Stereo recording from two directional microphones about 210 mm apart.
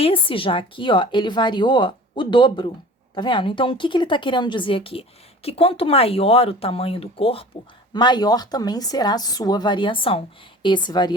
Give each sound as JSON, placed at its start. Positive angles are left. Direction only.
{"t": 0.0, "sound": "speech", "side_deg": 25}